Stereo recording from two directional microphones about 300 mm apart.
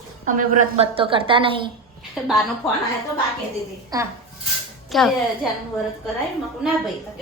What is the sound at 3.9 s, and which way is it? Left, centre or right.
Speech, centre.